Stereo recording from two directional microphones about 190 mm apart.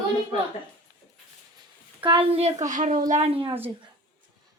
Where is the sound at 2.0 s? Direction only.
30° right (ahead or behind).